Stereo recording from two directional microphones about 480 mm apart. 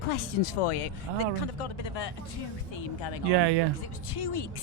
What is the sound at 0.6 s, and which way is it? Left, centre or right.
Speech, left.